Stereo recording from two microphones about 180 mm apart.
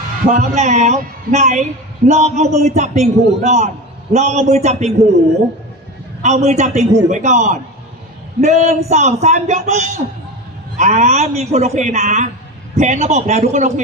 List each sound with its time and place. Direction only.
0.3 s a man's voice: 45° right (ahead or behind)
6.2 s a man's voice: 40° right (ahead or behind)